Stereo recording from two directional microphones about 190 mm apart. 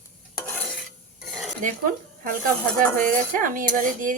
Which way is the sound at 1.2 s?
Centre (ahead or behind).